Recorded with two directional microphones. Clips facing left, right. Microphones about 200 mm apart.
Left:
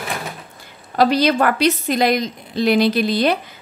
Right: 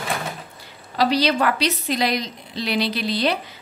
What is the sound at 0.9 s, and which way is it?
A woman's voice, 50° left (ahead or behind).